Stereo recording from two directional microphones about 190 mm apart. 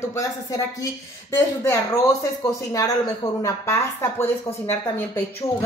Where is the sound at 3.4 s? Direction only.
15° left (ahead or behind).